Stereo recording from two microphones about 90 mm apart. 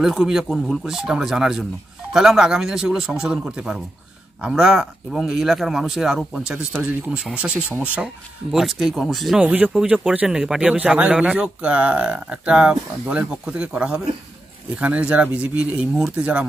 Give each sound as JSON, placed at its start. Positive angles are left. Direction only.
{"t": 0.0, "sound": "speech", "side_deg": -5}
{"t": 9.5, "sound": "speech", "side_deg": -15}